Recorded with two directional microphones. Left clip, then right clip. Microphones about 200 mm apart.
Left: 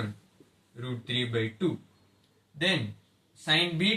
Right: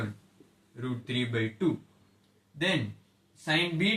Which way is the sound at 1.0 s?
15° right (ahead or behind).